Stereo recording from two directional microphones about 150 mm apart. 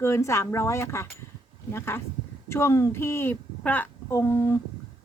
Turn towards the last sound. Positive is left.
turn(degrees=20)  # may be behind; listen again after turning